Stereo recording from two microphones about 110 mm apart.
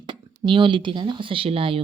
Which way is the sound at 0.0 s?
45° right (ahead or behind).